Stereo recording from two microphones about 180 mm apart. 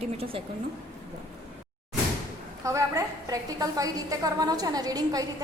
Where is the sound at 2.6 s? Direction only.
15° right (ahead or behind).